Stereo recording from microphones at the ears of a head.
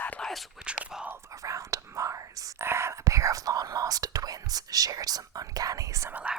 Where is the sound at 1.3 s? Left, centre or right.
Right.